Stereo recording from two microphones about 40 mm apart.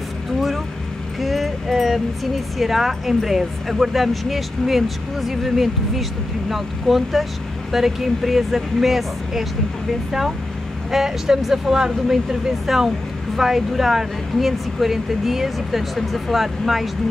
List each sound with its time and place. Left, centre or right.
1.2 s speech: centre
10.9 s speech: centre